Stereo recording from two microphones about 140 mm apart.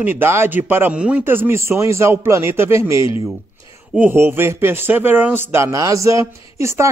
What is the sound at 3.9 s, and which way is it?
Speech, 15° right (ahead or behind).